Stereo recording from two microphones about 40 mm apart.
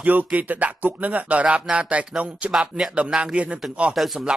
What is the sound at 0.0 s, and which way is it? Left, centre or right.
A man's voice, right.